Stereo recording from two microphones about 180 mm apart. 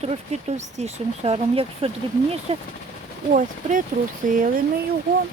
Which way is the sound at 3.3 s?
45° right (ahead or behind).